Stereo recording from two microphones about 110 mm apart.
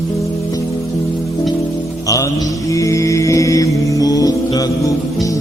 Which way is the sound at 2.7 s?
30° left (ahead or behind).